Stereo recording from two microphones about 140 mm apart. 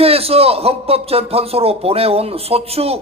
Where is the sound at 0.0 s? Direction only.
45° right (ahead or behind).